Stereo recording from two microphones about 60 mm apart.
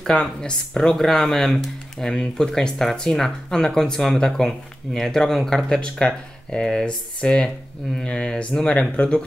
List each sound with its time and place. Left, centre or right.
0.0 s speech: centre